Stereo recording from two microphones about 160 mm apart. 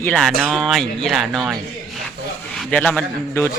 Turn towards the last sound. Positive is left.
turn(degrees=10)  # may be behind; listen again after turning